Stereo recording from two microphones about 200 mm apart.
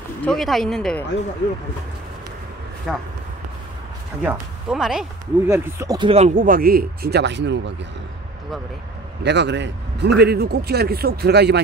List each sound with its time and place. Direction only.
0.2 s speech: centre (ahead or behind)
2.9 s speech: centre (ahead or behind)
4.2 s speech: 5° right (ahead or behind)
5.5 s speech: 15° right (ahead or behind); by 7.7 s 60° right (ahead or behind)
9.2 s speech: 60° right (ahead or behind)